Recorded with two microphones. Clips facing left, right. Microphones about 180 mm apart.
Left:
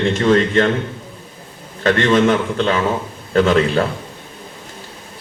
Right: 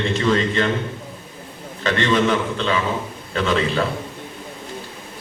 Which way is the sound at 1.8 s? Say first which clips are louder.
Left 5 dB; 50° left (ahead or behind).